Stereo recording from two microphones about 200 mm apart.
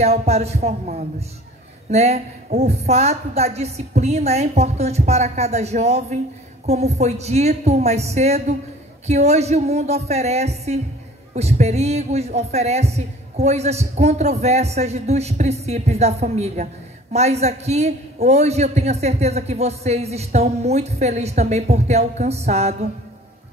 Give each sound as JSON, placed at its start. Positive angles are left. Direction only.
{"t": 0.0, "sound": "a man's voice", "side_deg": -30}